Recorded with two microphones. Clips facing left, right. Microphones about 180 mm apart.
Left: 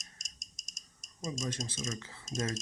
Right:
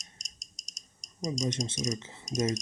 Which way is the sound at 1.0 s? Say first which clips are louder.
Right 6 dB; 15° right (ahead or behind).